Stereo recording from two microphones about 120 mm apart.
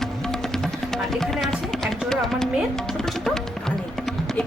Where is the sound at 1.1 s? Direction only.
5° left (ahead or behind).